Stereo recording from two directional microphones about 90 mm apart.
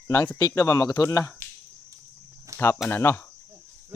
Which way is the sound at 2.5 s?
35° right (ahead or behind).